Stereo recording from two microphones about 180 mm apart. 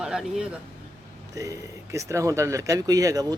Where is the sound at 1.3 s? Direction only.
20° right (ahead or behind).